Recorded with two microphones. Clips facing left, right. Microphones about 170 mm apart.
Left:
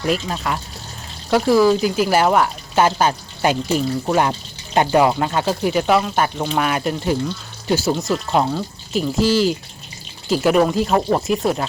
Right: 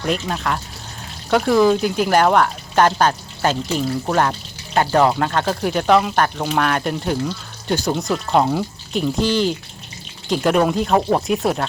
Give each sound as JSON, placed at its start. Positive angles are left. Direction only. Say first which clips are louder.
{"t": 0.0, "sound": "speech", "louder": "left 1 dB", "side_deg": 5}
{"t": 4.1, "sound": "water", "louder": "left 1 dB", "side_deg": 15}
{"t": 4.9, "sound": "speech", "louder": "even", "side_deg": 10}